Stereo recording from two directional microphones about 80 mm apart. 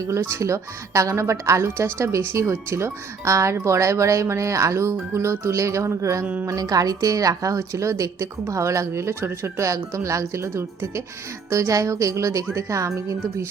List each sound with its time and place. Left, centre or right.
0.0 s a woman's voice: right